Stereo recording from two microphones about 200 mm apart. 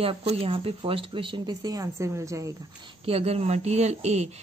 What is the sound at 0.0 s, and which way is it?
Speech, 30° right (ahead or behind).